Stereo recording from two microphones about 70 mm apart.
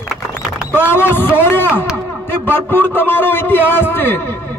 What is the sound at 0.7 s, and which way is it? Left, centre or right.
A man's voice, left.